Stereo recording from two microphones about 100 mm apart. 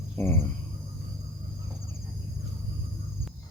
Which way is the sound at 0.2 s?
25° left (ahead or behind).